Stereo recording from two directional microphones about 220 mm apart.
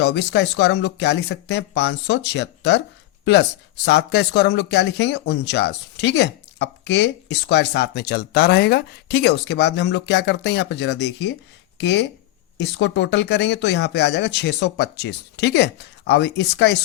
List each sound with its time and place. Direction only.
0.0 s speech: 50° left (ahead or behind)